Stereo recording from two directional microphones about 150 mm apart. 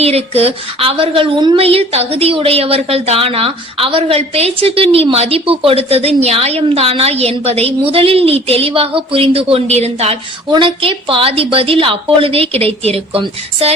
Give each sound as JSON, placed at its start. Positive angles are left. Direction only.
{"t": 0.0, "sound": "speech", "side_deg": -45}
{"t": 10.5, "sound": "speech", "side_deg": -35}